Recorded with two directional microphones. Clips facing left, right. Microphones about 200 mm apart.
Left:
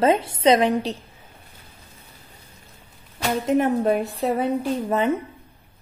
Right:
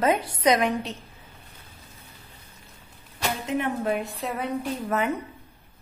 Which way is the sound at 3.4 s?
40° left (ahead or behind).